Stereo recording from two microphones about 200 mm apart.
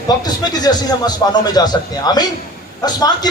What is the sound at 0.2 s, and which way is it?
A man's voice, 20° left (ahead or behind).